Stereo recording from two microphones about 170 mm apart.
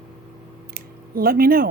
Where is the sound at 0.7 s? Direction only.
60° right (ahead or behind).